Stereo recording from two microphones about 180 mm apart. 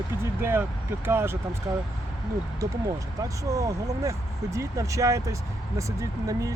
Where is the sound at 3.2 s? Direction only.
20° right (ahead or behind).